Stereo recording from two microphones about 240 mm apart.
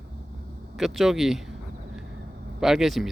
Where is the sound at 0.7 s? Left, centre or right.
Centre.